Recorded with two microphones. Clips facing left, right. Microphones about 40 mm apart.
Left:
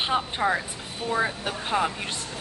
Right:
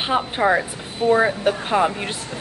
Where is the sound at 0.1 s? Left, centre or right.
Right.